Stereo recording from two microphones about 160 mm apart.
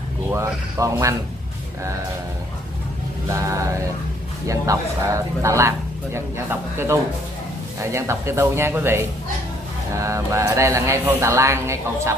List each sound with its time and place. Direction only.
0.3 s speech: 20° right (ahead or behind)
3.3 s a man's voice: 20° right (ahead or behind)